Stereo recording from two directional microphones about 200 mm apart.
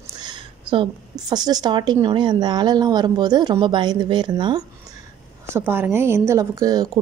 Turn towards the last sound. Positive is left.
turn(degrees=-15)  # may be behind; listen again after turning